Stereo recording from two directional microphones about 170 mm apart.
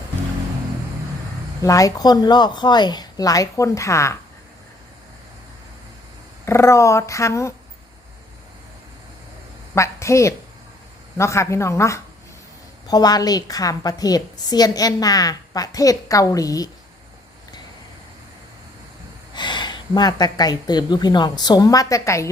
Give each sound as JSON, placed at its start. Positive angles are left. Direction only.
{"t": 1.6, "sound": "a woman's voice", "side_deg": 20}
{"t": 6.4, "sound": "speech", "side_deg": 15}
{"t": 9.7, "sound": "a woman's voice", "side_deg": 15}
{"t": 19.3, "sound": "speech", "side_deg": 25}